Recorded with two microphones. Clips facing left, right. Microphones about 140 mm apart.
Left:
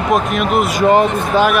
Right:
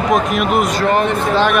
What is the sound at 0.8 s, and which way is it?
Speech, 15° left (ahead or behind).